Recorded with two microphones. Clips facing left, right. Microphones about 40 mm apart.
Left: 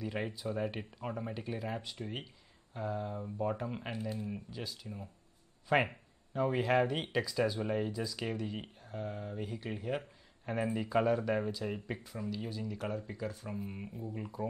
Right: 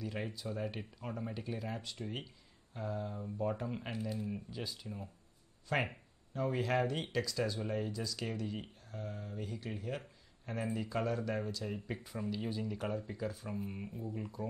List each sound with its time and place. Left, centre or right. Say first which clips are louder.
0.0 s speech: left 3 dB; centre
5.7 s speech: left 5 dB; centre
12.0 s speech: even; centre
12.8 s speech: left 2 dB; centre